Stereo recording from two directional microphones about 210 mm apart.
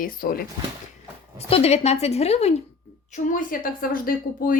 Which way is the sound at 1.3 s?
30° left (ahead or behind).